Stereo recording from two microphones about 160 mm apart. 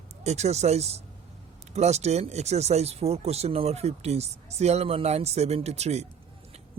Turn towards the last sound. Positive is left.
turn(degrees=-45)  # may be behind; listen again after turning